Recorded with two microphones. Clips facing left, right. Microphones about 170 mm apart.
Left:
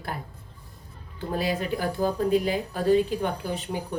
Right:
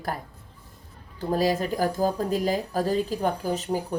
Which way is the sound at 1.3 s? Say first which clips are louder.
Right 3 dB; 40° right (ahead or behind).